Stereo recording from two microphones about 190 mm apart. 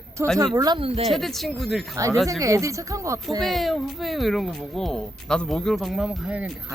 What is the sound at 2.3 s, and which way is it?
Speech, 15° right (ahead or behind).